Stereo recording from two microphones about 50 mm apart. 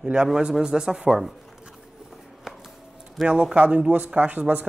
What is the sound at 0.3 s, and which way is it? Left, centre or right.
Speech, centre.